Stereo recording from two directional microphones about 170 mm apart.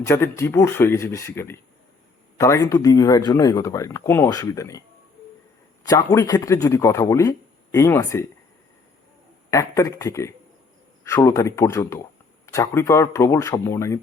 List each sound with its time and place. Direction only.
0.0 s a man's voice: 15° left (ahead or behind)
5.8 s a man's voice: 20° left (ahead or behind)
9.5 s a man's voice: 20° left (ahead or behind)